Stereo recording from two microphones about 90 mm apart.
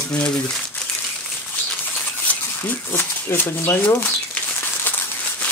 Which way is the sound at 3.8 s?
25° left (ahead or behind).